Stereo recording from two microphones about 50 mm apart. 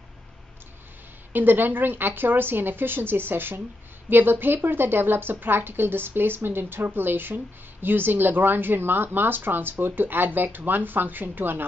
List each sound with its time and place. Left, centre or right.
1.3 s speech: right